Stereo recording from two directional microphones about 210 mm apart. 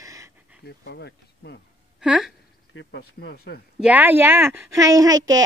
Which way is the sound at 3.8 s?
5° right (ahead or behind).